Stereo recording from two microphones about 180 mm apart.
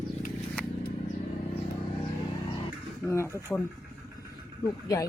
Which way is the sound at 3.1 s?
15° left (ahead or behind).